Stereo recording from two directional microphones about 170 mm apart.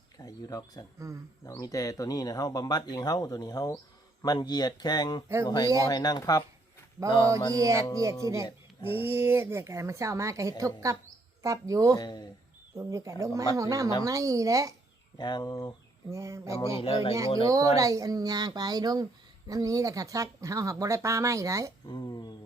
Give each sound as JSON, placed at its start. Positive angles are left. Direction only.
{"t": 0.2, "sound": "speech", "side_deg": 20}
{"t": 0.9, "sound": "speech", "side_deg": -20}
{"t": 1.5, "sound": "speech", "side_deg": 20}
{"t": 7.5, "sound": "speech", "side_deg": -20}
{"t": 11.9, "sound": "speech", "side_deg": 25}
{"t": 12.7, "sound": "speech", "side_deg": -20}
{"t": 15.2, "sound": "speech", "side_deg": 25}
{"t": 16.0, "sound": "speech", "side_deg": -20}
{"t": 16.8, "sound": "speech", "side_deg": 35}
{"t": 17.4, "sound": "speech", "side_deg": -20}
{"t": 21.8, "sound": "speech", "side_deg": 25}